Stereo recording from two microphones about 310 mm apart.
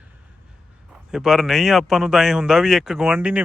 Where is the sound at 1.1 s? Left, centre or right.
Centre.